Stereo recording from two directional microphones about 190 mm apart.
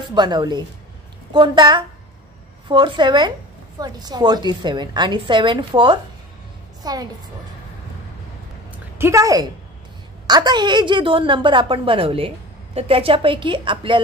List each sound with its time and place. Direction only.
0.1 s a woman's voice: 20° right (ahead or behind)
8.9 s a woman's voice: 15° right (ahead or behind)